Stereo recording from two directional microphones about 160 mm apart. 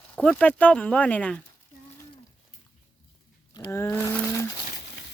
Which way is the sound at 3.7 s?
15° left (ahead or behind).